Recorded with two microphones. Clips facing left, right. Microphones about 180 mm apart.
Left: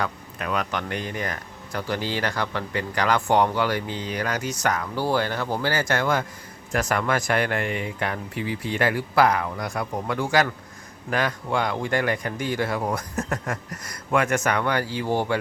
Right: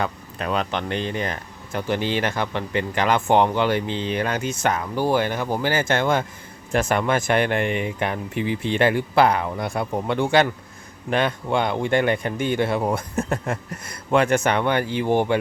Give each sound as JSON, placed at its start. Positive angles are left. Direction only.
{"t": 0.0, "sound": "speech", "side_deg": -30}